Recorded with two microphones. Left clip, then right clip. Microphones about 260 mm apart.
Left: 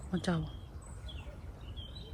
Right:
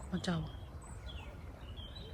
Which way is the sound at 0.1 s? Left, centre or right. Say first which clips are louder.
Left 4 dB; centre.